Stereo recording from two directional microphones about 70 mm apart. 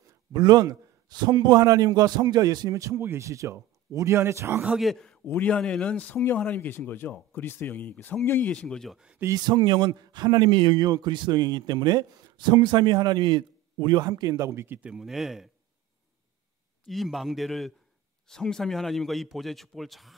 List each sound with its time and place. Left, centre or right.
0.3 s a man's voice: right
2.7 s speech: right
3.0 s speech: right
3.3 s speech: right
4.9 s a sound: centre
5.4 s speech: centre
8.5 s speech: centre
8.9 s speech: centre
9.3 s a man's voice: right
13.9 s a man's voice: right
14.4 s speech: right
14.8 s speech: centre
16.8 s a man's voice: centre